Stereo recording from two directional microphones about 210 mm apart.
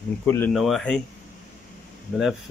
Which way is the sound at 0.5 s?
Centre (ahead or behind).